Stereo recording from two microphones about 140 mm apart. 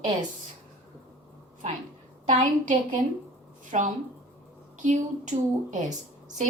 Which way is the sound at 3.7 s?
55° right (ahead or behind).